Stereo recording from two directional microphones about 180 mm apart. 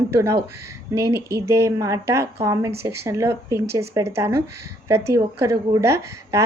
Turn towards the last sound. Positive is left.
turn(degrees=-15)  # may be behind; listen again after turning